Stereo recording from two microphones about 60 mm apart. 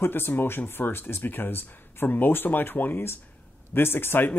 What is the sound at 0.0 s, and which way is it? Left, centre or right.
Speech, left.